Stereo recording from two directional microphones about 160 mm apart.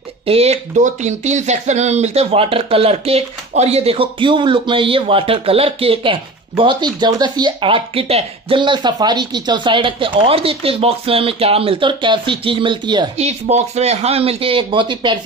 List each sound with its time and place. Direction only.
0.3 s speech: 40° right (ahead or behind)
13.2 s speech: 45° right (ahead or behind)